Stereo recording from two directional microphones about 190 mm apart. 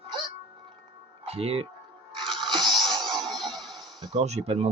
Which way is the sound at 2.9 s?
25° right (ahead or behind).